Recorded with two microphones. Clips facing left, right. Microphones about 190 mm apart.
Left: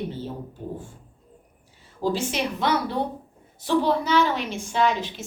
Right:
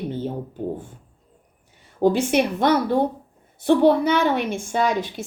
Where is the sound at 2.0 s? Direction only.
60° right (ahead or behind).